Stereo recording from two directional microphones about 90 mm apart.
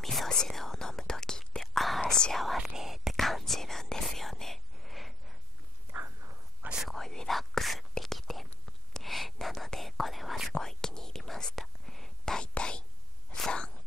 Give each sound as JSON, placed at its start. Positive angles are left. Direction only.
{"t": 0.0, "sound": "whispering", "side_deg": 0}
{"t": 5.9, "sound": "walk", "side_deg": -25}
{"t": 6.6, "sound": "whispering", "side_deg": -10}
{"t": 6.9, "sound": "whispering", "side_deg": 5}
{"t": 13.4, "sound": "a sound", "side_deg": 10}